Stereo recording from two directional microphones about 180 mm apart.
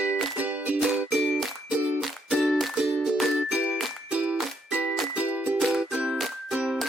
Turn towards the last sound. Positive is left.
turn(degrees=-5)  # may be behind; listen again after turning